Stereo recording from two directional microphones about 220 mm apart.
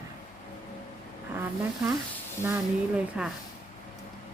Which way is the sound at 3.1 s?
5° right (ahead or behind).